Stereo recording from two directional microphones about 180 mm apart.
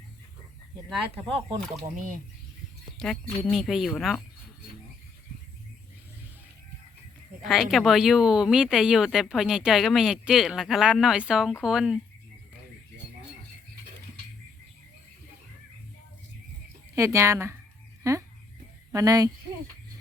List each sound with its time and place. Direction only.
3.0 s speech: 5° left (ahead or behind)
7.4 s speech: centre (ahead or behind)
16.9 s speech: 15° right (ahead or behind)